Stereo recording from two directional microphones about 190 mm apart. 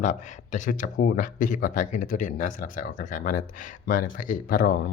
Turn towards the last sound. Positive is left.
turn(degrees=50)  # may be behind; listen again after turning